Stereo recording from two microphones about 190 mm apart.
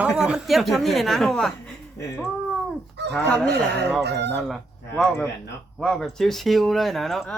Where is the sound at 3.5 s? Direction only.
60° right (ahead or behind).